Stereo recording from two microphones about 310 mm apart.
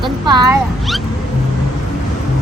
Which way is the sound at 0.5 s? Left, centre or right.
Centre.